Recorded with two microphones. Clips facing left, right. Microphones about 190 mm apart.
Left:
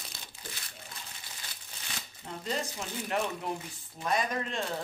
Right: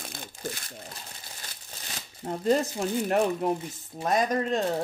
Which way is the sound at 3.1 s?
45° right (ahead or behind).